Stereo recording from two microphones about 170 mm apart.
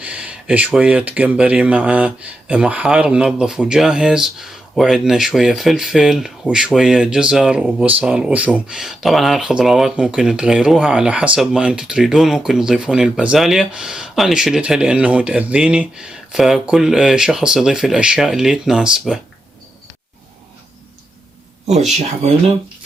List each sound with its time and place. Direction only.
0.0 s speech: 5° right (ahead or behind)
21.7 s speech: 40° right (ahead or behind)